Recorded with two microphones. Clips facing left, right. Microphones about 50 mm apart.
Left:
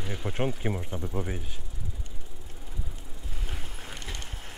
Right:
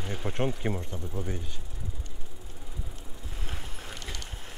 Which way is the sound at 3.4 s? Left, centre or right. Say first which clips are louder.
Even; centre.